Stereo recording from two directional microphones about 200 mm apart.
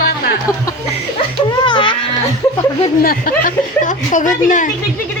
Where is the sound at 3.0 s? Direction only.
45° left (ahead or behind).